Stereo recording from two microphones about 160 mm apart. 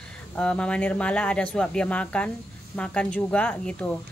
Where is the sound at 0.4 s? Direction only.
5° left (ahead or behind).